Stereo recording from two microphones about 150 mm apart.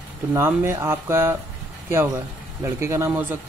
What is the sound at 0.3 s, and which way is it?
Speech, 15° right (ahead or behind).